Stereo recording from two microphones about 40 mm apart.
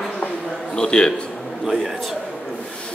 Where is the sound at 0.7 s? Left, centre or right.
Centre.